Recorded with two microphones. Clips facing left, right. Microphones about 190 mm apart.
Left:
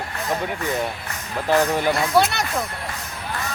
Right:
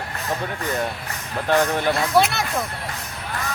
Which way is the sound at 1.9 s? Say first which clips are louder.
Even; centre (ahead or behind).